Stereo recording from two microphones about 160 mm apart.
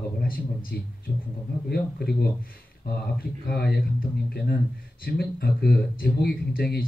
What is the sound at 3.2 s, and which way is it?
Speech, 75° left (ahead or behind).